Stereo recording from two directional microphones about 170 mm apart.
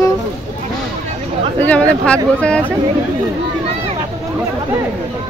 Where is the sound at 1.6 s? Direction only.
10° left (ahead or behind).